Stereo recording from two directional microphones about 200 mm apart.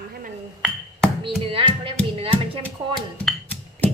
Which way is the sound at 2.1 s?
30° right (ahead or behind).